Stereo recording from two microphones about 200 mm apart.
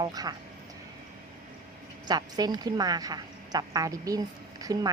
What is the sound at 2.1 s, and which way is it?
A woman's voice, 20° right (ahead or behind).